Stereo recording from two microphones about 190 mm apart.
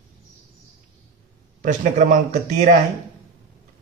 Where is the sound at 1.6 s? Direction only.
45° right (ahead or behind).